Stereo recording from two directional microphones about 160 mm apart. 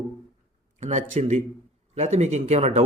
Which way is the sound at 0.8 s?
50° right (ahead or behind).